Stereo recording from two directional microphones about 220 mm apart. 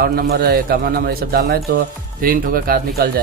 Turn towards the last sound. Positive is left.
turn(degrees=-45)  # may be behind; listen again after turning